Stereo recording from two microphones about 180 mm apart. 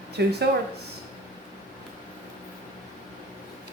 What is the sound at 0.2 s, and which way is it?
Speech, 65° right (ahead or behind).